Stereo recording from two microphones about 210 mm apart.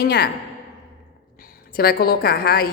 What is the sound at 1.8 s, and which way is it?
Speech, 45° left (ahead or behind).